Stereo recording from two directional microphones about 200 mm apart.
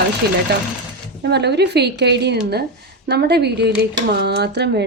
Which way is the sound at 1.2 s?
55° right (ahead or behind).